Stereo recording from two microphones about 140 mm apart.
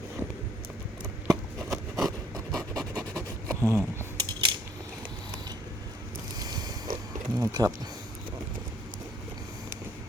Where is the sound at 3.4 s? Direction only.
20° right (ahead or behind).